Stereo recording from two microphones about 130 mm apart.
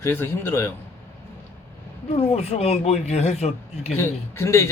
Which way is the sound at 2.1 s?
55° left (ahead or behind).